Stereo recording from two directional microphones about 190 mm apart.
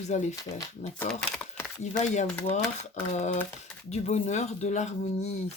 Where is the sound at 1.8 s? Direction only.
40° left (ahead or behind).